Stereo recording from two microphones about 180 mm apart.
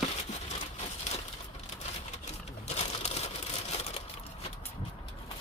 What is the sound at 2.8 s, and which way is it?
Crushing, 35° left (ahead or behind).